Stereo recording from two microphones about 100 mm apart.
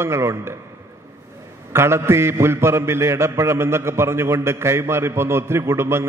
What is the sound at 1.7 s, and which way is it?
A man's voice, 25° right (ahead or behind).